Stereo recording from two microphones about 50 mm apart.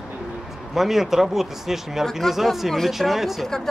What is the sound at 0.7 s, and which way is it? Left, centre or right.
Speech, centre.